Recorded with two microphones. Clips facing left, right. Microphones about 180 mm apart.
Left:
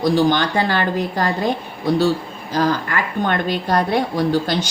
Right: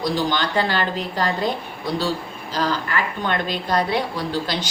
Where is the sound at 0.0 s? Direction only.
50° left (ahead or behind).